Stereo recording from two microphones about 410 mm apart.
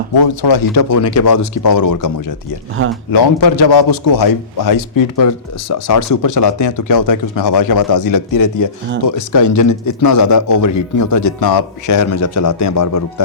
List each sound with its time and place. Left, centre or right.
0.1 s a man's voice: left
3.1 s a man's voice: left